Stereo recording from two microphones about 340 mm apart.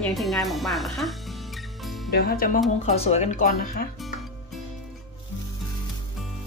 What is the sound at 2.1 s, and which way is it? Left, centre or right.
Speech, left.